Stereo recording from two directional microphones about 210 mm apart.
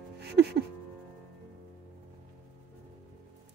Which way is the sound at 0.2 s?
50° right (ahead or behind).